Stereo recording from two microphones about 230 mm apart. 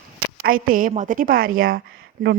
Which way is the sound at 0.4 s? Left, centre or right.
Right.